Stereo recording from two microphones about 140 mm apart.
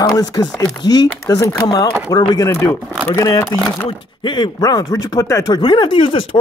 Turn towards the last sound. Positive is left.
turn(degrees=35)  # may be behind; listen again after turning